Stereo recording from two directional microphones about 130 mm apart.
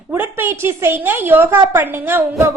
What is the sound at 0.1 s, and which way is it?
A woman's voice, 15° right (ahead or behind).